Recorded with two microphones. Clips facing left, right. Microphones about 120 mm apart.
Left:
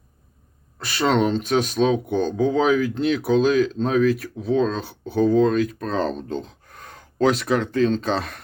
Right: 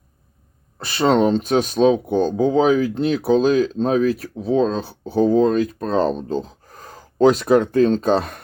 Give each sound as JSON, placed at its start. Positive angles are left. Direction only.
{"t": 0.9, "sound": "speech", "side_deg": -35}